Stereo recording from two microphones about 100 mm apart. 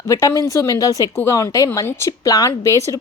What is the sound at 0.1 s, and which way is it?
Speech, 35° left (ahead or behind).